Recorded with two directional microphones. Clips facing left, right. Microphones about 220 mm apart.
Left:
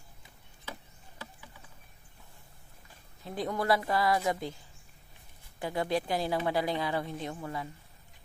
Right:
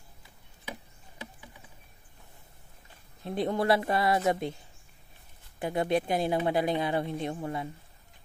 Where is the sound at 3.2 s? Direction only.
25° right (ahead or behind).